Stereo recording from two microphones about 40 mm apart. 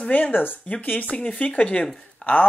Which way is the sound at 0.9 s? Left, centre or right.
Left.